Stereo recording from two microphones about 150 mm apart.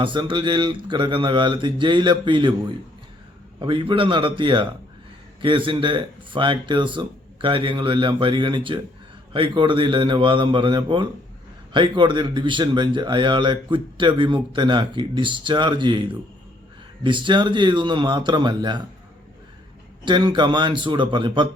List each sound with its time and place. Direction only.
0.0 s speech: 30° right (ahead or behind)
3.6 s speech: 35° right (ahead or behind)
20.1 s speech: 30° right (ahead or behind)